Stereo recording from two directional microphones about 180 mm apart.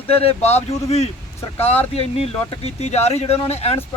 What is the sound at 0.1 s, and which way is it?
Speech, 35° left (ahead or behind).